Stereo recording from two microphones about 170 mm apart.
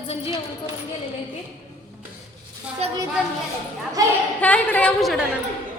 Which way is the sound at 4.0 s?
20° right (ahead or behind).